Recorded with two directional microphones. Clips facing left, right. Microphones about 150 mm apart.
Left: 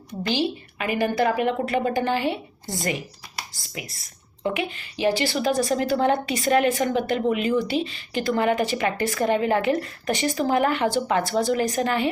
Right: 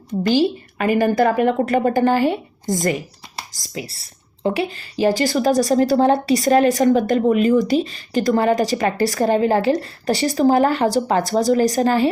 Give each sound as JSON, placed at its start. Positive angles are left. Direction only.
{"t": 0.2, "sound": "a woman's voice", "side_deg": -45}
{"t": 3.6, "sound": "a woman's voice", "side_deg": -30}